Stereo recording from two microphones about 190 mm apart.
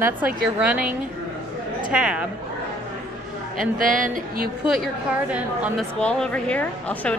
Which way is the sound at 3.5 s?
45° right (ahead or behind).